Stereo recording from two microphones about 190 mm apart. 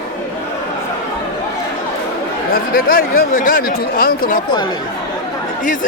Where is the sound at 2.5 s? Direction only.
50° left (ahead or behind).